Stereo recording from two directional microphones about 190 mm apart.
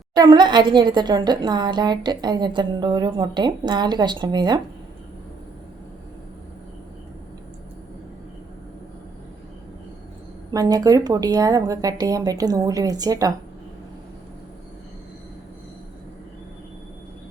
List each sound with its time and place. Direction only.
0.1 s a woman's voice: 20° right (ahead or behind)
10.5 s a woman's voice: 20° right (ahead or behind)